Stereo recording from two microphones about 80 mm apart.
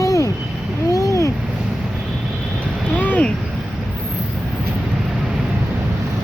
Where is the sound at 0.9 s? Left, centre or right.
Left.